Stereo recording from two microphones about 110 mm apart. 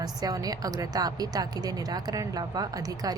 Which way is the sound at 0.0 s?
35° right (ahead or behind).